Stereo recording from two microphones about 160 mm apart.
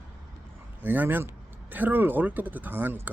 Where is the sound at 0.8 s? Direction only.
10° right (ahead or behind).